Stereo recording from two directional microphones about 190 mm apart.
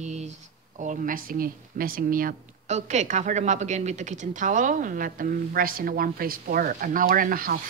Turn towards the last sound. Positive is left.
turn(degrees=-50)  # may be behind; listen again after turning